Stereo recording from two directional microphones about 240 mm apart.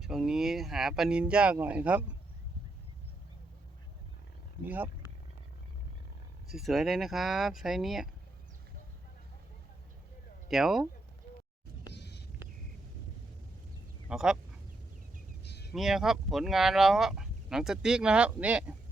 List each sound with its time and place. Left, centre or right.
0.0 s speech: centre
4.6 s speech: centre
6.5 s speech: centre
10.5 s speech: centre
11.9 s vehicle: left
14.1 s speech: centre
15.4 s a sound: left
15.7 s speech: centre